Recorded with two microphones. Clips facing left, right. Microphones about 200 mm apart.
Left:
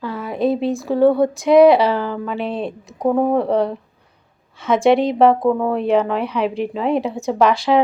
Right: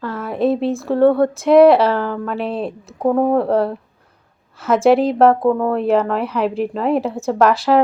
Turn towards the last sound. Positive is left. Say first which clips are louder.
# right 1 dB
turn(degrees=-5)  # may be behind; listen again after turning